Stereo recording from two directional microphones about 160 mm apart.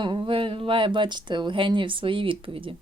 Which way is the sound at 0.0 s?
30° right (ahead or behind).